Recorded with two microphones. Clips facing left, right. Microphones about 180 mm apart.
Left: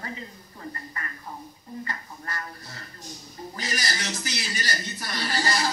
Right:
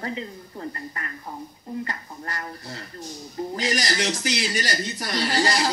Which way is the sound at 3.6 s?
80° right.